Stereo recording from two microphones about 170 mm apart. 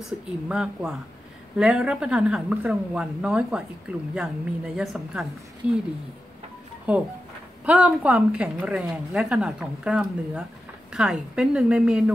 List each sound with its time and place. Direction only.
0.5 s a woman's voice: 5° right (ahead or behind)
6.9 s a woman's voice: 10° right (ahead or behind)